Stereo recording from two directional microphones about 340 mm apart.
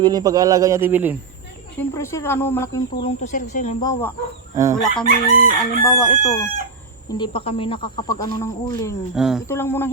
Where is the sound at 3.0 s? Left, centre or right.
Left.